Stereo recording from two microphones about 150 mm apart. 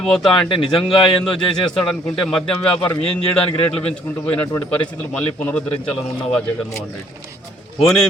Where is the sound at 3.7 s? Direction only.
5° left (ahead or behind).